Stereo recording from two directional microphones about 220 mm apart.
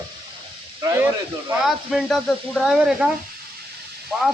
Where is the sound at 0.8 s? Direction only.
15° right (ahead or behind).